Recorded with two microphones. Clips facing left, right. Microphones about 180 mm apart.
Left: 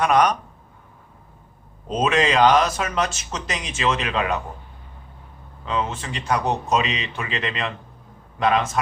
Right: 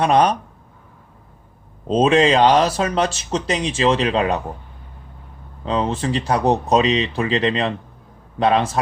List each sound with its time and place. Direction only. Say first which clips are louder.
0.0 s speech: right 3 dB; 30° right (ahead or behind)
1.9 s speech: right 6 dB; 30° right (ahead or behind)
5.6 s speech: right 6 dB; 35° right (ahead or behind)